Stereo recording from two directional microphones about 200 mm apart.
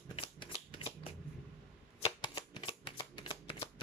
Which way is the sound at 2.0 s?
25° left (ahead or behind).